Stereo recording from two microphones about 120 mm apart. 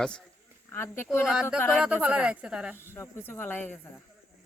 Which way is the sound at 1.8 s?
10° right (ahead or behind).